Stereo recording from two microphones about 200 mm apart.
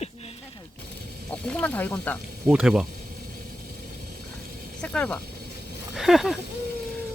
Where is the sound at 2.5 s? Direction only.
5° right (ahead or behind).